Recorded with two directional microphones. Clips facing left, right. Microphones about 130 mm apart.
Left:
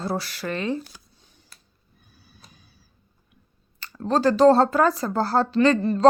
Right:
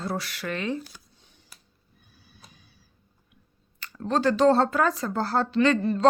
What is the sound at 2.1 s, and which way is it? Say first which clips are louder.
Neigh: left 1 dB; 40° left (ahead or behind).